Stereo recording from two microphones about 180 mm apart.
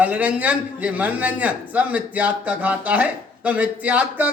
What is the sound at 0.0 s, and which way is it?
A man's voice, 10° right (ahead or behind).